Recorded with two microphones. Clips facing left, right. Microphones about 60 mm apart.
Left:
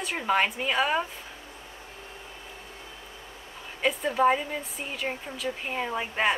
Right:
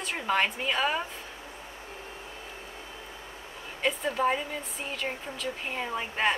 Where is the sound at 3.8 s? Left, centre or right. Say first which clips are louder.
Left 3 dB; centre.